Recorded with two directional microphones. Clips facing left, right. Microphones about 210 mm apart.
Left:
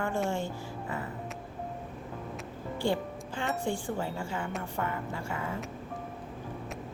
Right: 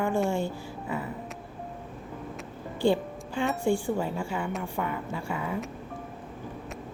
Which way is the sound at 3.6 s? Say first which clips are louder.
Right 6 dB; 15° right (ahead or behind).